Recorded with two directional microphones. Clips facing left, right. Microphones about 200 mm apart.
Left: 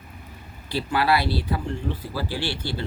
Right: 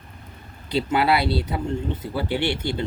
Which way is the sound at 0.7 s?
20° right (ahead or behind).